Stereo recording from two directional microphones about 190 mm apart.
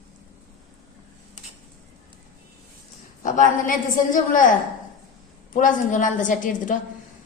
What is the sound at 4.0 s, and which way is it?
A woman's voice, 45° left (ahead or behind).